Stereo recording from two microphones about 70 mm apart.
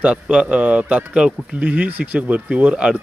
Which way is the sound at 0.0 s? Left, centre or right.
Centre.